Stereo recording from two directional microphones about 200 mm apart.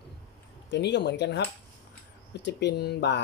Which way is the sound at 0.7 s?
60° left (ahead or behind).